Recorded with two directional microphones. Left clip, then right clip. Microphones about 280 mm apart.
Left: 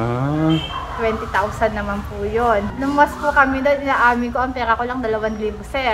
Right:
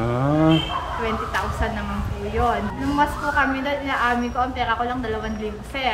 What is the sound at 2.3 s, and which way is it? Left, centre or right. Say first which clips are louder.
A woman's voice: left 5 dB; centre.